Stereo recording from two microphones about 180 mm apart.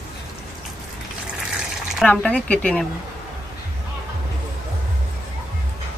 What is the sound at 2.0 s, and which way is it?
Speech, 5° left (ahead or behind).